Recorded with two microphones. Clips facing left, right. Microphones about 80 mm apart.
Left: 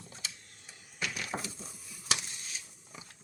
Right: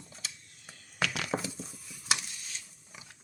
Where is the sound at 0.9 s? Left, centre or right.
Right.